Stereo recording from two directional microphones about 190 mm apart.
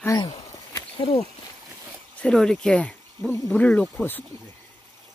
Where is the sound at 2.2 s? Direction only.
5° left (ahead or behind).